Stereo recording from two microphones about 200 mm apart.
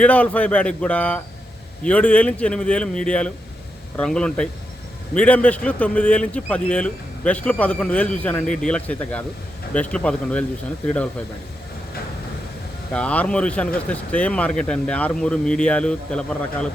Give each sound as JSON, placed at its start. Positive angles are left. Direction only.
{"t": 0.0, "sound": "a man's voice", "side_deg": 5}
{"t": 12.9, "sound": "speech", "side_deg": 5}